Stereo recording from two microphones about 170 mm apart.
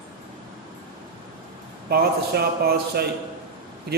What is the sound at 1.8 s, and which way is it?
Speech, 65° right (ahead or behind).